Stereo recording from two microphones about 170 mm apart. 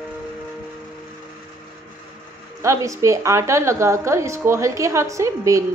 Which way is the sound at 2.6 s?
20° right (ahead or behind).